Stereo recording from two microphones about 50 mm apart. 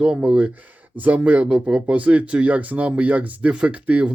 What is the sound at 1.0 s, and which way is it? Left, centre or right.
Speech, right.